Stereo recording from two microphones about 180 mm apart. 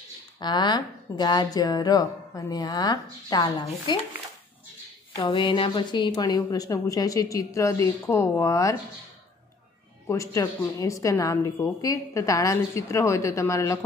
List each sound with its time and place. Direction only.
0.4 s speech: 25° left (ahead or behind)
5.1 s speech: 25° left (ahead or behind)
10.0 s a woman's voice: 15° left (ahead or behind)